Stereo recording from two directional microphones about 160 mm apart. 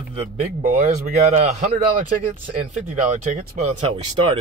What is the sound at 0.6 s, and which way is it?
Speech, 60° right (ahead or behind).